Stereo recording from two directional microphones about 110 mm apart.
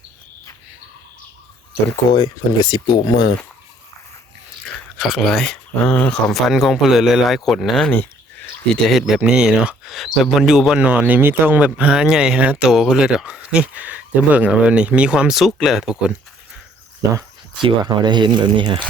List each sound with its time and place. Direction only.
2.1 s speech: 40° left (ahead or behind)
4.9 s speech: centre (ahead or behind)
6.5 s speech: centre (ahead or behind)
7.9 s a sound: 15° left (ahead or behind)
8.8 s speech: centre (ahead or behind)
17.6 s speech: 45° right (ahead or behind)